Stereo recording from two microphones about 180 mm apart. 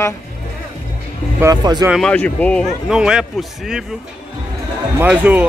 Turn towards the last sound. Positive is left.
turn(degrees=-10)  # may be behind; listen again after turning